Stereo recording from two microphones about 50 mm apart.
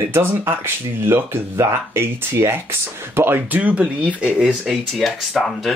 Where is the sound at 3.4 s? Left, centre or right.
Right.